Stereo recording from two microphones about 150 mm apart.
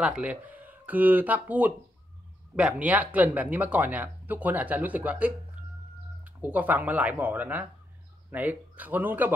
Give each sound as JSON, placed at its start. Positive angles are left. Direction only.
{"t": 0.0, "sound": "speech", "side_deg": -5}